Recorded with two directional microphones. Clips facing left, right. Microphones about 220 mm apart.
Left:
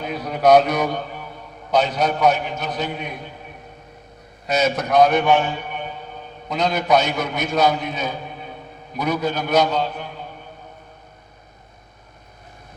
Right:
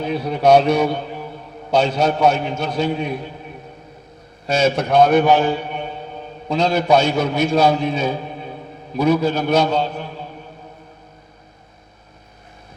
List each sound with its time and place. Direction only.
0.0 s a man's voice: 30° right (ahead or behind)
4.4 s a man's voice: 30° right (ahead or behind)